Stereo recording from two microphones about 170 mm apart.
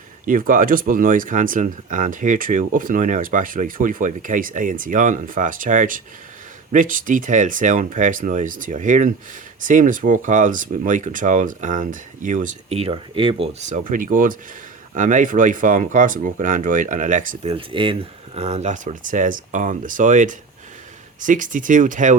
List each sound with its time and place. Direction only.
0.3 s speech: 55° right (ahead or behind)
17.5 s speech: 30° right (ahead or behind)
18.3 s speech: 40° right (ahead or behind)